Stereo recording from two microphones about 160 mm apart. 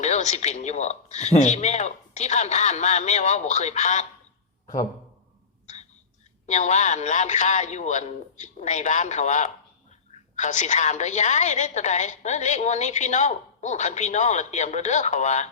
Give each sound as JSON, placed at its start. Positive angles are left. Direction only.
{"t": 0.0, "sound": "a woman's voice", "side_deg": 45}
{"t": 4.6, "sound": "a sound", "side_deg": 50}
{"t": 6.5, "sound": "a woman's voice", "side_deg": 45}